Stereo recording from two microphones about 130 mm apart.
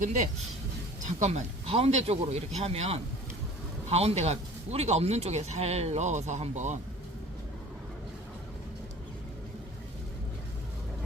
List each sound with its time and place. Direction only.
0.0 s a man's voice: 65° right (ahead or behind)